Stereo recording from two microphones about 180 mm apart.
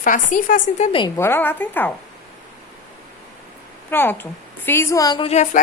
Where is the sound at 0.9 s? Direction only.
30° left (ahead or behind).